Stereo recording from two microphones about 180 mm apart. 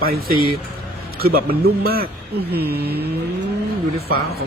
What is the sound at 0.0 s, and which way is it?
A man's voice, 55° right (ahead or behind).